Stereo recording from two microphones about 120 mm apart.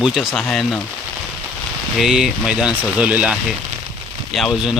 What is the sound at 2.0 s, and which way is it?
Speech, 5° right (ahead or behind).